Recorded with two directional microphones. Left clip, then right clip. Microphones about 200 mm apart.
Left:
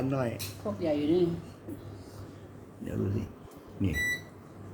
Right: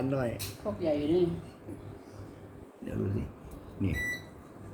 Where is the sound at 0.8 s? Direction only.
35° left (ahead or behind).